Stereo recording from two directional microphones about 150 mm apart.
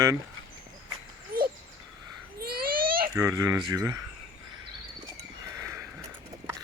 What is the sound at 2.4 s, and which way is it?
Babbling, 80° right.